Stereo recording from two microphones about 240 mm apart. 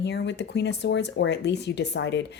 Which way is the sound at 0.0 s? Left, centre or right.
Left.